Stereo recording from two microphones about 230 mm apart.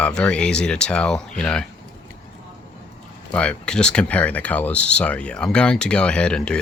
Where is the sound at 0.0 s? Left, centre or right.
Centre.